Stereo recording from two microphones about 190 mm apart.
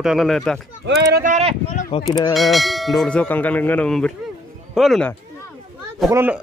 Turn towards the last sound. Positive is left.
turn(degrees=-15)  # may be behind; listen again after turning